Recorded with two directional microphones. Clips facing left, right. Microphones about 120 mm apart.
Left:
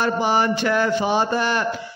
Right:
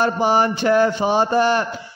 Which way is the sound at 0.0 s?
40° right (ahead or behind).